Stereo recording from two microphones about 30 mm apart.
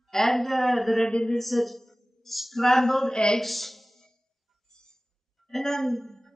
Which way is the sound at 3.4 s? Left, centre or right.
Centre.